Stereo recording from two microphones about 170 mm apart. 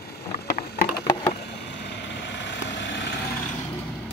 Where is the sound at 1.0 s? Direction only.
25° left (ahead or behind).